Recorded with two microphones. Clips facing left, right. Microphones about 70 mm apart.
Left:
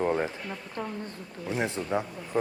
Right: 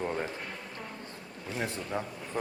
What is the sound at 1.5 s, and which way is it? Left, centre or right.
Speech, left.